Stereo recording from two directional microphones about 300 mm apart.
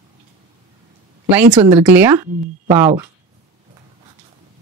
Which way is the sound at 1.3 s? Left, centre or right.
Centre.